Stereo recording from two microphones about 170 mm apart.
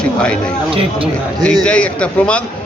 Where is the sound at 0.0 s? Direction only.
5° left (ahead or behind).